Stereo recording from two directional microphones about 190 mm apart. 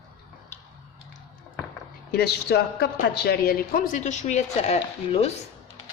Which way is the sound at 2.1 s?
60° left (ahead or behind).